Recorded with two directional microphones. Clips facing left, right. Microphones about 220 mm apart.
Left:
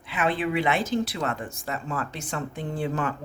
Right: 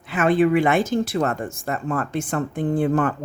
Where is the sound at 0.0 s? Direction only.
45° right (ahead or behind).